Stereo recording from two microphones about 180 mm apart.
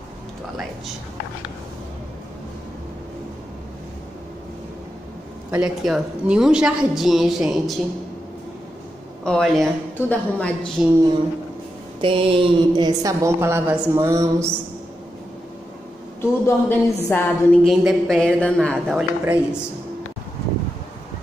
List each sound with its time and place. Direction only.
5.5 s a woman's voice: 5° right (ahead or behind)
9.2 s a woman's voice: centre (ahead or behind)
12.0 s a woman's voice: 30° right (ahead or behind)
16.2 s a woman's voice: 15° left (ahead or behind)
17.6 s a woman's voice: centre (ahead or behind)
19.2 s speech: 10° right (ahead or behind)